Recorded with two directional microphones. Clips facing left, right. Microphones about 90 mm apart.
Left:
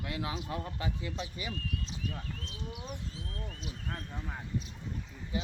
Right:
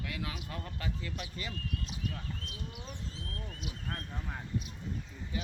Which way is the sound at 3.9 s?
5° left (ahead or behind).